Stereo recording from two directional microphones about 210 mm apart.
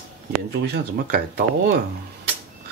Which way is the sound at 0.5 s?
50° right (ahead or behind).